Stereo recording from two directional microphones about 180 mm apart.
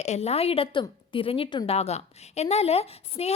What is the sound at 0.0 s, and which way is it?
A woman's voice, 35° left (ahead or behind).